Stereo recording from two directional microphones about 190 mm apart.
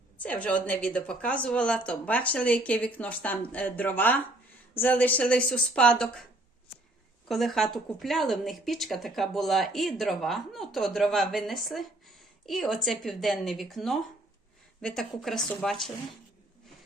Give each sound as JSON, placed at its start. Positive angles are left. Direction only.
{"t": 0.2, "sound": "speech", "side_deg": 5}
{"t": 7.3, "sound": "speech", "side_deg": 0}